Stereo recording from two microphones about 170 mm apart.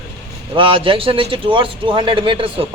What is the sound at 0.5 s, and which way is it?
A man's voice, 30° right (ahead or behind).